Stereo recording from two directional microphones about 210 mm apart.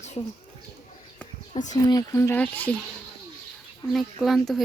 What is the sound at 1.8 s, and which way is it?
Speech, 15° left (ahead or behind).